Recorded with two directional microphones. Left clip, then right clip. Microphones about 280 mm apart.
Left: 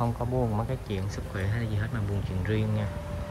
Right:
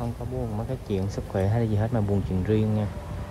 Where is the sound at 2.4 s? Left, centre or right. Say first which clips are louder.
Right 5 dB; centre.